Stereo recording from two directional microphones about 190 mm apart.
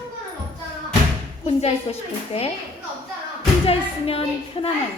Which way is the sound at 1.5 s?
30° left (ahead or behind).